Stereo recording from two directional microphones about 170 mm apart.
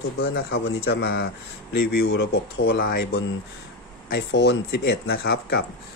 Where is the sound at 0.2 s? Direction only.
80° left.